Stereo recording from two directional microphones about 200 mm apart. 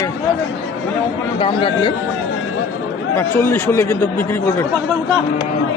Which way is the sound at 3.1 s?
10° left (ahead or behind).